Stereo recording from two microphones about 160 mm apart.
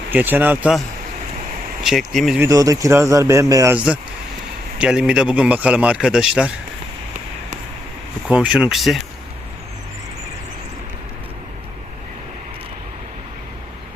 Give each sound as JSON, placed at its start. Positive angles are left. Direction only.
{"t": 0.1, "sound": "a man's voice", "side_deg": -10}
{"t": 1.8, "sound": "speech", "side_deg": 0}
{"t": 2.4, "sound": "speech", "side_deg": -20}
{"t": 4.8, "sound": "a man's voice", "side_deg": -5}
{"t": 8.3, "sound": "speech", "side_deg": -5}